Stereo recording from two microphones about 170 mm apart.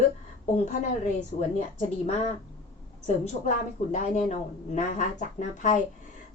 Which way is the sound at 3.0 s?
40° left (ahead or behind).